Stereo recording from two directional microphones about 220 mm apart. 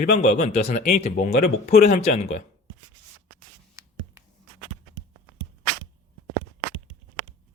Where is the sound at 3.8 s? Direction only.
15° right (ahead or behind).